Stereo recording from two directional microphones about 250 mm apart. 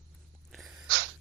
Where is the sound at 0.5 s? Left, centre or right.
Centre.